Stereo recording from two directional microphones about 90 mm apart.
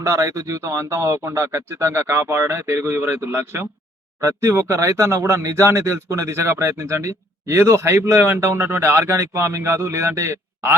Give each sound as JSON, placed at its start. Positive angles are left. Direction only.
{"t": 0.0, "sound": "speech", "side_deg": -35}